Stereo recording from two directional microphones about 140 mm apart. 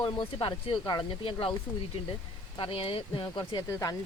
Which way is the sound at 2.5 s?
40° left (ahead or behind).